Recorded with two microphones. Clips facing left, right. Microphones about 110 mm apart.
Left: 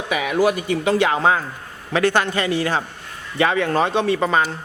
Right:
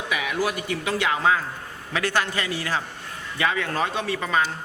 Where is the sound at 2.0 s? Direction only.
55° left (ahead or behind).